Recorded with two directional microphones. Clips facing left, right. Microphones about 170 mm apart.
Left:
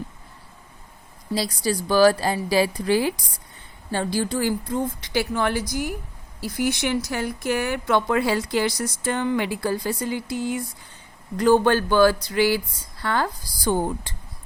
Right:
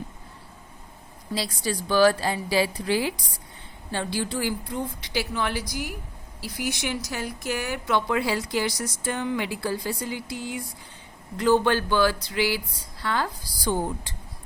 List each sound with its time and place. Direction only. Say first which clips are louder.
1.4 s a woman's voice: left 4 dB; 40° left (ahead or behind)